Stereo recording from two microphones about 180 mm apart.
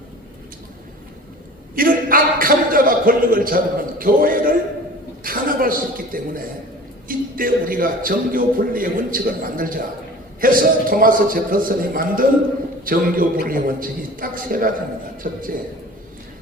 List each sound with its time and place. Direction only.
1.7 s a sound: 55° right (ahead or behind)
5.2 s chuckle: 50° right (ahead or behind)
7.1 s a man's voice: 50° right (ahead or behind)